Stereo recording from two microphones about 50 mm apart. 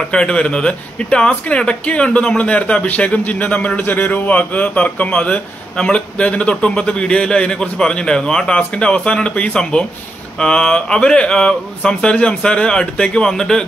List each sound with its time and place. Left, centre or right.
0.0 s speech: centre